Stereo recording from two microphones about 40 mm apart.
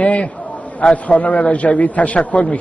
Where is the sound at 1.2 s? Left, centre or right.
Left.